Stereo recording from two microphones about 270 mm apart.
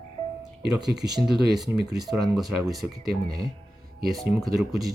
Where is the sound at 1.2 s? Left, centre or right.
Centre.